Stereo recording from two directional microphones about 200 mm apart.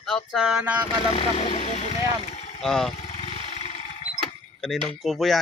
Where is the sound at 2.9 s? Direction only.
30° left (ahead or behind).